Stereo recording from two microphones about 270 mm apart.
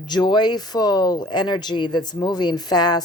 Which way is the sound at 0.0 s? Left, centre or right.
Centre.